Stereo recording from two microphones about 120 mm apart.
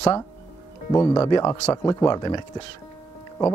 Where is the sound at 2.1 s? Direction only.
35° left (ahead or behind).